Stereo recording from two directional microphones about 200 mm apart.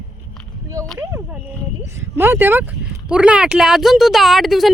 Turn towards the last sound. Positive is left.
turn(degrees=0)  # may be behind; listen again after turning